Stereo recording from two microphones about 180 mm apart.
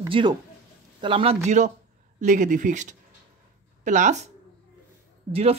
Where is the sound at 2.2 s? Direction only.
45° right (ahead or behind).